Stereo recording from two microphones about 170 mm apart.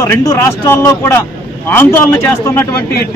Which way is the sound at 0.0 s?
15° left (ahead or behind).